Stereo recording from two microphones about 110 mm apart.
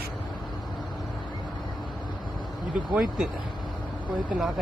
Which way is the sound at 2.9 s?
5° right (ahead or behind).